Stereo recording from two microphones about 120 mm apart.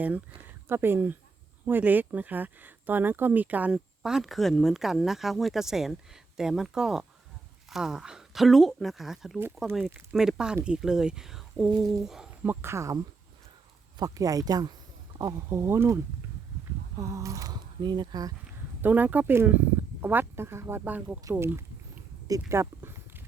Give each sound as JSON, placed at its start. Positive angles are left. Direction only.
{"t": 0.7, "sound": "speech", "side_deg": -20}
{"t": 12.5, "sound": "speech", "side_deg": -20}
{"t": 14.0, "sound": "speech", "side_deg": -30}
{"t": 17.0, "sound": "speech", "side_deg": -25}
{"t": 18.8, "sound": "speech", "side_deg": -15}
{"t": 22.3, "sound": "a sound", "side_deg": -25}